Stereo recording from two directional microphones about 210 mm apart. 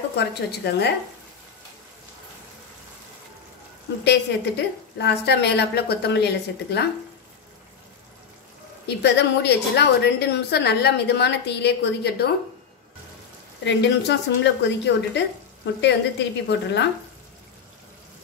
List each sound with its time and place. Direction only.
0.1 s a woman's voice: 50° left (ahead or behind)
4.0 s a woman's voice: 55° left (ahead or behind)
8.8 s a woman's voice: 55° left (ahead or behind)
13.7 s speech: 55° left (ahead or behind)